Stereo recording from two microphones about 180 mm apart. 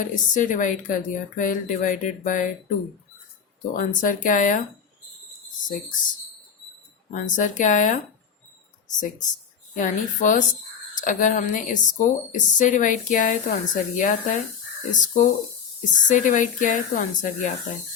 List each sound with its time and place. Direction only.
0.0 s speech: 45° left (ahead or behind)
3.8 s speech: 45° left (ahead or behind)
7.1 s speech: 45° left (ahead or behind)